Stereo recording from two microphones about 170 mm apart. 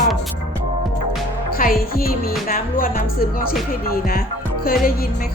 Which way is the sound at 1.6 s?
60° left (ahead or behind).